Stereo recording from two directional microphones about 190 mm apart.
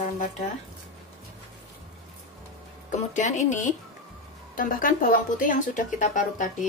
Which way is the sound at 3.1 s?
40° left (ahead or behind).